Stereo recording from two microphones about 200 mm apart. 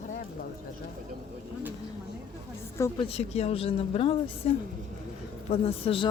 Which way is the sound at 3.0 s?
30° left (ahead or behind).